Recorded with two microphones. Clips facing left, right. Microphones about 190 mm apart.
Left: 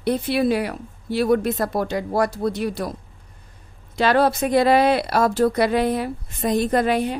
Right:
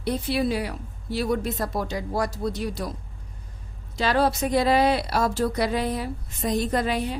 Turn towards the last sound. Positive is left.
turn(degrees=60)  # may be behind; listen again after turning